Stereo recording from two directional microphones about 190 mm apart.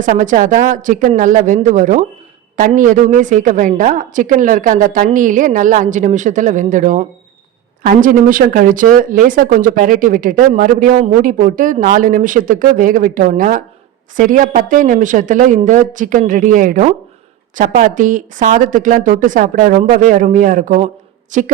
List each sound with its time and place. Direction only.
0.0 s a woman's voice: 40° right (ahead or behind)